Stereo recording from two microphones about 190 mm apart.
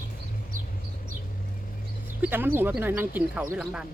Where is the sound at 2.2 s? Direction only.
10° right (ahead or behind).